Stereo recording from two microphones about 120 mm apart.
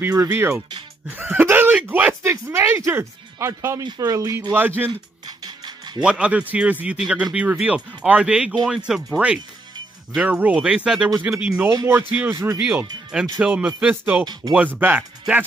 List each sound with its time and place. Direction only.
0.1 s speech: 25° right (ahead or behind)
4.6 s speech: 15° right (ahead or behind)
5.2 s music: 35° right (ahead or behind)
6.0 s speech: 10° right (ahead or behind)
11.7 s speech: 25° right (ahead or behind)
12.1 s speech: 15° right (ahead or behind)
13.4 s speech: 10° right (ahead or behind)